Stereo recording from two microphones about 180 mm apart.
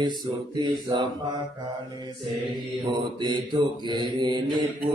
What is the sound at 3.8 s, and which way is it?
Mantra, 25° right (ahead or behind).